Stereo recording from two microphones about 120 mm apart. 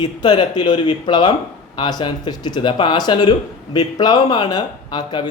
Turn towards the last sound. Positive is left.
turn(degrees=40)  # may be behind; listen again after turning